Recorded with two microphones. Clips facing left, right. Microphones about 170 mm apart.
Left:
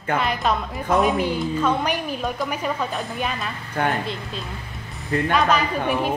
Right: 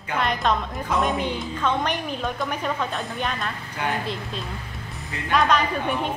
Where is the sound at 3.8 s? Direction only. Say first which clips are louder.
Left 5 dB; 50° left (ahead or behind).